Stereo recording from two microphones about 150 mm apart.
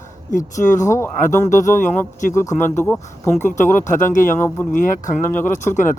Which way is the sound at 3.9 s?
60° left (ahead or behind).